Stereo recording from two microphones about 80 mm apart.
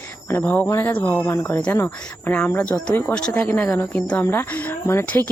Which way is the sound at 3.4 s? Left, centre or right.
Left.